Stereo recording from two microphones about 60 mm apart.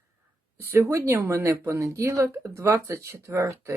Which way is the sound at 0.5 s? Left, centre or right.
Right.